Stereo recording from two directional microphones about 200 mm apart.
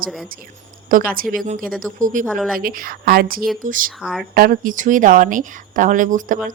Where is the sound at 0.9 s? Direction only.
45° right (ahead or behind).